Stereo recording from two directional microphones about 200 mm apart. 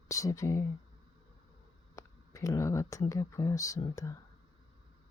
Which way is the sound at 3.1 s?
15° left (ahead or behind).